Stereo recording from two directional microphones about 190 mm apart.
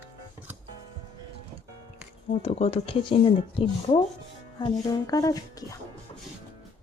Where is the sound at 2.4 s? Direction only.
30° left (ahead or behind).